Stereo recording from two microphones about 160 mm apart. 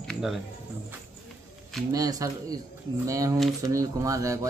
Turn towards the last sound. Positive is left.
turn(degrees=-20)  # may be behind; listen again after turning